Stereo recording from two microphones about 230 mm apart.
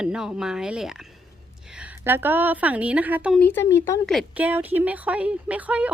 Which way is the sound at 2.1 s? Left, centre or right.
Centre.